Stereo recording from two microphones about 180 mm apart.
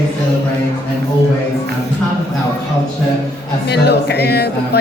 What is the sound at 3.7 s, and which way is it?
Speech, 65° left (ahead or behind).